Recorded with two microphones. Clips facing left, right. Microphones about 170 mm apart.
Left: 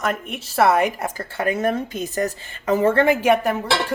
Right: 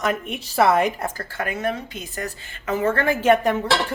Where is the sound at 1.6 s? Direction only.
40° left (ahead or behind).